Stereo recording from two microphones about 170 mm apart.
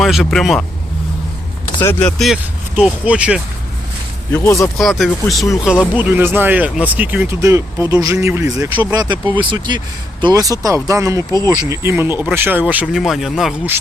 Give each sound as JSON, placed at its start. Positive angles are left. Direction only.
{"t": 0.0, "sound": "speech", "side_deg": 0}
{"t": 1.8, "sound": "speech", "side_deg": 10}
{"t": 4.4, "sound": "speech", "side_deg": 15}
{"t": 4.8, "sound": "speech", "side_deg": 0}
{"t": 8.9, "sound": "speech", "side_deg": -25}